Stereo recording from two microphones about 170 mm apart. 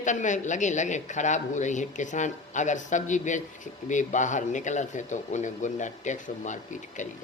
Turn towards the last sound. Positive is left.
turn(degrees=45)  # may be behind; listen again after turning